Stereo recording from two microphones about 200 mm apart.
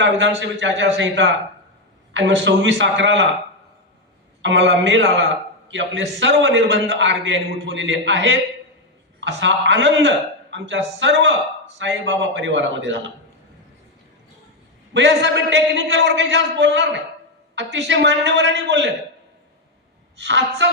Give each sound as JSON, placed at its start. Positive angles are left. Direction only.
{"t": 0.0, "sound": "a man's voice", "side_deg": -65}
{"t": 4.4, "sound": "a man's voice", "side_deg": -65}
{"t": 14.9, "sound": "a man's voice", "side_deg": -65}
{"t": 20.1, "sound": "a man's voice", "side_deg": -65}